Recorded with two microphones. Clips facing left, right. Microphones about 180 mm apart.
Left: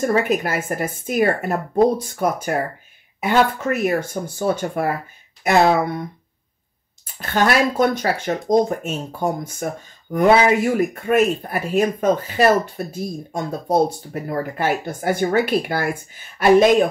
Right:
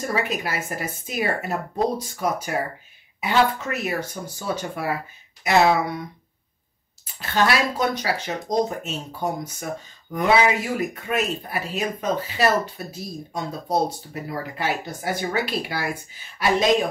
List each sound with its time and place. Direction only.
0.0 s speech: 50° left (ahead or behind)
7.2 s speech: 50° left (ahead or behind)